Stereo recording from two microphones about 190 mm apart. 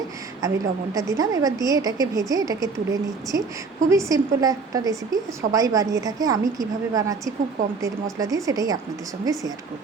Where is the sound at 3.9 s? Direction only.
15° right (ahead or behind).